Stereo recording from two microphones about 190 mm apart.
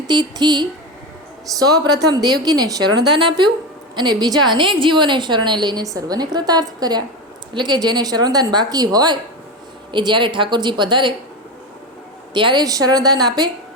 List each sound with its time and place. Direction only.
0.1 s a woman's voice: 20° right (ahead or behind)
12.3 s a woman's voice: 25° right (ahead or behind)